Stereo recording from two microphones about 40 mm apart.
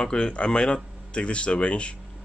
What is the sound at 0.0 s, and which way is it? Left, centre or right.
Speech, left.